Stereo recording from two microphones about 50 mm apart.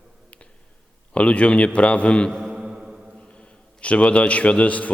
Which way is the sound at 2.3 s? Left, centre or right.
Centre.